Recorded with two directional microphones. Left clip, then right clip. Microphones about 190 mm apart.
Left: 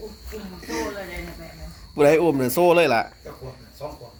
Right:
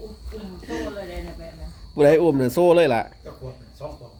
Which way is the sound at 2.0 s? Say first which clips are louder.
Right 1 dB; 20° right (ahead or behind).